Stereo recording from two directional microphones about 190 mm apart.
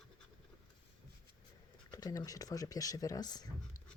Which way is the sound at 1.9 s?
20° left (ahead or behind).